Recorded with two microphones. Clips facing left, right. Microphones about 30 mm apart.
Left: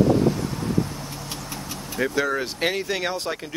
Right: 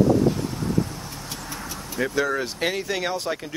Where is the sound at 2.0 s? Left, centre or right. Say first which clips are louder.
Even; centre.